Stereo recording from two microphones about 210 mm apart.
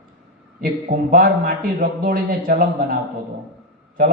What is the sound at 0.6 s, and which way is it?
A man's voice, 40° right (ahead or behind).